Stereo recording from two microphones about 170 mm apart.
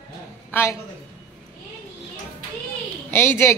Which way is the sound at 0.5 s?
15° left (ahead or behind).